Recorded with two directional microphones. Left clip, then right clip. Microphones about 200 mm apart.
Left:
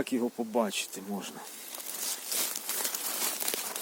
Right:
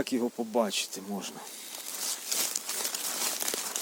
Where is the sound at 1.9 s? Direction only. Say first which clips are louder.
Right 2 dB; centre (ahead or behind).